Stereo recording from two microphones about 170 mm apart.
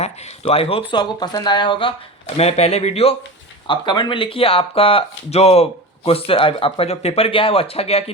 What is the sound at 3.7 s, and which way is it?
Speech, 25° left (ahead or behind).